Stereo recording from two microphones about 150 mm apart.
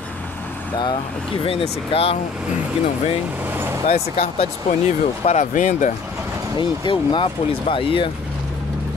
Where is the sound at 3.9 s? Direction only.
45° left (ahead or behind).